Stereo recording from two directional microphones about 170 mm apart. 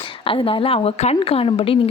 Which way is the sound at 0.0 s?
30° left (ahead or behind).